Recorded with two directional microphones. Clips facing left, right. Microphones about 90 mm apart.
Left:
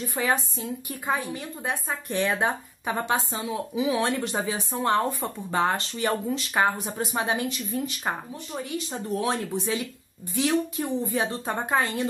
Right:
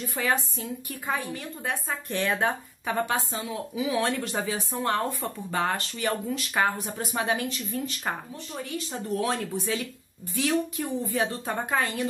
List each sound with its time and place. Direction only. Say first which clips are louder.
0.1 s a woman's voice: left 1 dB; 20° left (ahead or behind)